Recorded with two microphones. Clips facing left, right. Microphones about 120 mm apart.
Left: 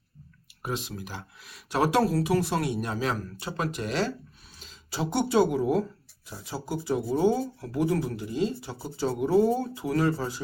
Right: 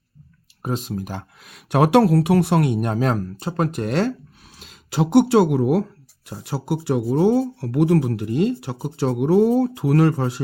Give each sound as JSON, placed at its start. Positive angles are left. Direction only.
{"t": 0.6, "sound": "speech", "side_deg": -45}
{"t": 4.5, "sound": "speech", "side_deg": -85}